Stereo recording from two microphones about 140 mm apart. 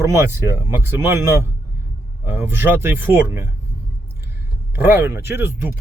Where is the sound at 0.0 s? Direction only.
20° right (ahead or behind).